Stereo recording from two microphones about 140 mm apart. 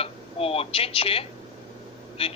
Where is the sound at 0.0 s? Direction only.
45° left (ahead or behind).